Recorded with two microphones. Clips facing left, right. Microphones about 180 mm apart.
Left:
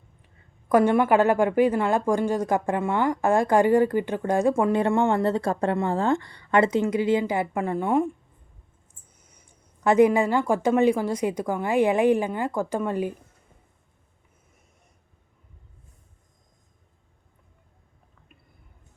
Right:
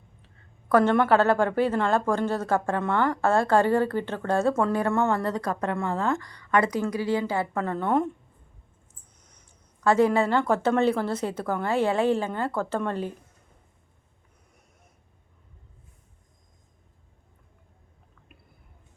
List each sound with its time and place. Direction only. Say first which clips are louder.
0.7 s a woman's voice: left 1 dB; 10° left (ahead or behind)
9.1 s a sound: left 2 dB; 10° left (ahead or behind)
9.8 s a woman's voice: left 3 dB; 20° left (ahead or behind)